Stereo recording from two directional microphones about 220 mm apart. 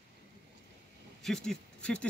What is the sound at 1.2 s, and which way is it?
Speech, centre (ahead or behind).